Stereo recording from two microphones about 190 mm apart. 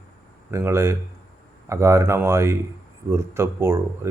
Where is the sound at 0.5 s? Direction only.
15° right (ahead or behind).